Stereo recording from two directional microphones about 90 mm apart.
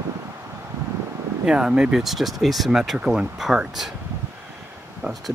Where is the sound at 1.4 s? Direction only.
10° right (ahead or behind).